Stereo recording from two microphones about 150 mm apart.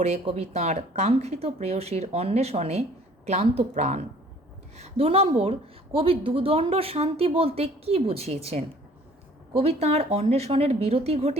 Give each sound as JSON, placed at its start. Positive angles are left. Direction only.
{"t": 0.0, "sound": "a woman's voice", "side_deg": -45}
{"t": 9.5, "sound": "a woman's voice", "side_deg": -40}